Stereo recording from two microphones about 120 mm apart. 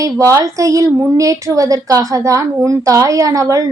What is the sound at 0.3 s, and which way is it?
A woman's voice, 25° right (ahead or behind).